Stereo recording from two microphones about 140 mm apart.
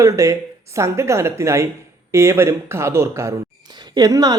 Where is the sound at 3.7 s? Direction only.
30° right (ahead or behind).